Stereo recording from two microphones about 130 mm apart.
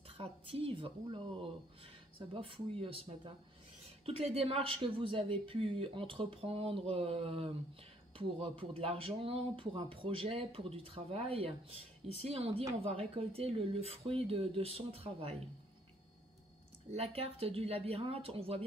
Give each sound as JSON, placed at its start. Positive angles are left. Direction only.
{"t": 0.2, "sound": "a woman's voice", "side_deg": -45}
{"t": 16.9, "sound": "a woman's voice", "side_deg": -50}